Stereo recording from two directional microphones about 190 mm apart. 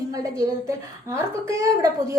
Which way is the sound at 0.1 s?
20° right (ahead or behind).